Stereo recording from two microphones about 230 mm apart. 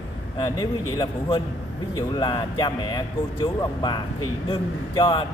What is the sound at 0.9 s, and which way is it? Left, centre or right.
Speech, centre.